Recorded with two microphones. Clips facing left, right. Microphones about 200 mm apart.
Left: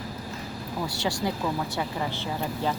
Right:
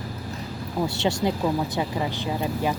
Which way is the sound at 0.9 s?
25° right (ahead or behind).